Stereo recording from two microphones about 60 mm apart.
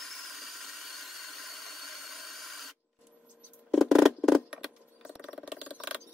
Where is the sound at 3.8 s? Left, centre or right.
Centre.